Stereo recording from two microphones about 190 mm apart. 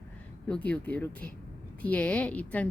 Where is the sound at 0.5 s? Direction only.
5° left (ahead or behind).